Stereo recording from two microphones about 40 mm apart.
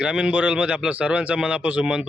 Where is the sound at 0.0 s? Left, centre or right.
Right.